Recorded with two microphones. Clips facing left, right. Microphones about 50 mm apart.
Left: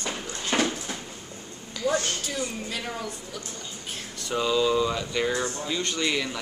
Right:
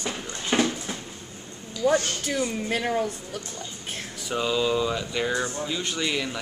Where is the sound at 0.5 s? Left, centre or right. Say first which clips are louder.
Right 2 dB; centre.